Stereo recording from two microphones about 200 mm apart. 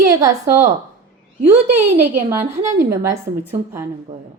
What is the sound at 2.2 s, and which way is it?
Speech, 15° right (ahead or behind).